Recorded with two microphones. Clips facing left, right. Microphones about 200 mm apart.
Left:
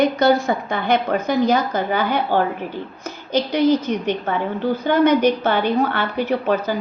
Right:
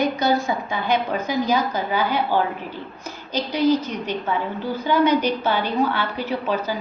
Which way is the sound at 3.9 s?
60° left (ahead or behind).